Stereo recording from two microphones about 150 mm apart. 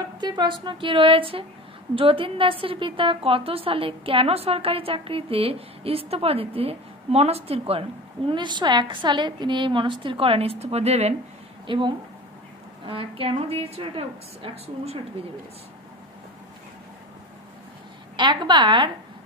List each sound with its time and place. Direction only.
0.2 s a woman's voice: 30° right (ahead or behind)
11.6 s a woman's voice: 35° right (ahead or behind)
18.1 s a woman's voice: 30° right (ahead or behind)